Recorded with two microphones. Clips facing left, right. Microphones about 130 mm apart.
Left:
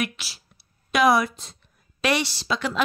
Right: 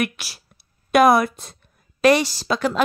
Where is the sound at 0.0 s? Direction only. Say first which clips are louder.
Right 4 dB; 55° right (ahead or behind).